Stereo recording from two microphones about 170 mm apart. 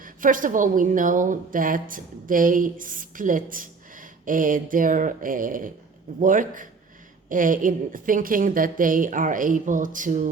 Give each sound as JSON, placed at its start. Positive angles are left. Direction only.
{"t": 0.0, "sound": "a woman's voice", "side_deg": -50}